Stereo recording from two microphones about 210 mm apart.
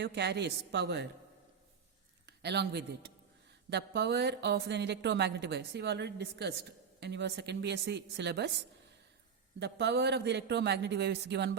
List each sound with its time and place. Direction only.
0.0 s a woman's voice: 55° right (ahead or behind)
2.2 s speech: 55° right (ahead or behind)